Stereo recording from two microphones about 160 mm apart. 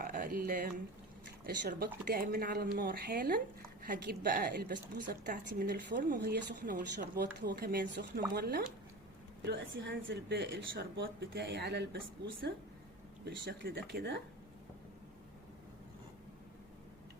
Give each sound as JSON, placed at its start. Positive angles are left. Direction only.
{"t": 0.0, "sound": "a woman's voice", "side_deg": -60}
{"t": 9.4, "sound": "speech", "side_deg": -90}
{"t": 13.2, "sound": "speech", "side_deg": -75}